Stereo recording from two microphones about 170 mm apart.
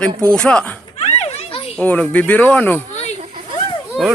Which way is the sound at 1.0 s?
35° left (ahead or behind).